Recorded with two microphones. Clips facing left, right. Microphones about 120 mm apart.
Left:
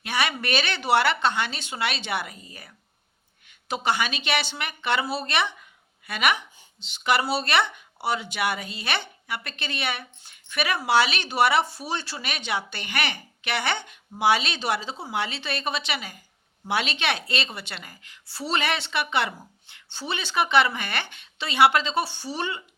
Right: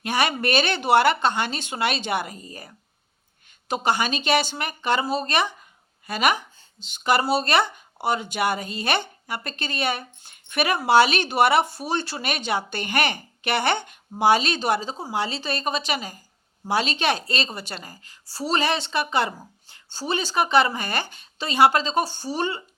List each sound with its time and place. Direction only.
0.0 s speech: 45° right (ahead or behind)
3.8 s speech: 45° right (ahead or behind)